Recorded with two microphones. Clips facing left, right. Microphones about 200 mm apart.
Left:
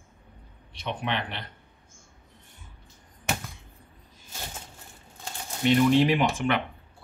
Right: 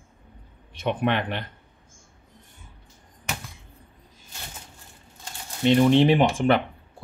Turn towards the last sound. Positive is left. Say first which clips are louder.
# right 5 dB
turn(degrees=-30)  # may be behind; listen again after turning